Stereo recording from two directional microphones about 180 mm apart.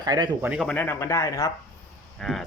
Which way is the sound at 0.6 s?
10° left (ahead or behind).